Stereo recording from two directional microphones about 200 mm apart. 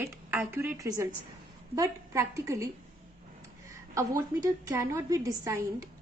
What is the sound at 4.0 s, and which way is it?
A woman's voice, 15° right (ahead or behind).